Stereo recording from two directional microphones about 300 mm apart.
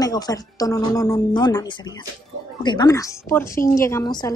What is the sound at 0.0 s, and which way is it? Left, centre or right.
A woman's voice, centre.